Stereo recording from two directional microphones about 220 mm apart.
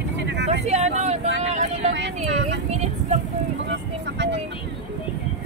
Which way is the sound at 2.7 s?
30° right (ahead or behind).